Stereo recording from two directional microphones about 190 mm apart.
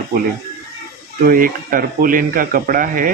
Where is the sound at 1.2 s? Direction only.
45° right (ahead or behind).